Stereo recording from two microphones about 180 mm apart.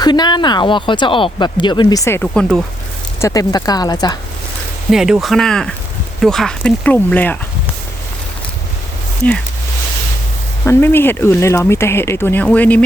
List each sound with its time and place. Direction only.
0.0 s speech: 25° left (ahead or behind)
2.2 s speech: 5° left (ahead or behind)
3.2 s speech: 20° left (ahead or behind)
4.9 s speech: 5° right (ahead or behind)
10.7 s speech: 10° left (ahead or behind)